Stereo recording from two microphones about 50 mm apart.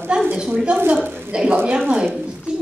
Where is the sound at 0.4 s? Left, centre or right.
Centre.